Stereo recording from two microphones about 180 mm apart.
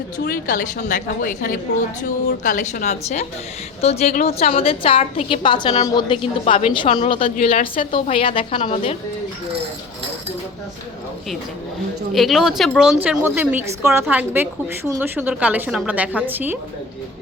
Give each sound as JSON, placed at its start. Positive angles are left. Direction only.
{"t": 0.3, "sound": "a woman's voice", "side_deg": 50}
{"t": 6.4, "sound": "a woman's voice", "side_deg": 35}
{"t": 7.3, "sound": "a woman's voice", "side_deg": 45}
{"t": 7.9, "sound": "a woman's voice", "side_deg": 30}
{"t": 12.1, "sound": "a woman's voice", "side_deg": 0}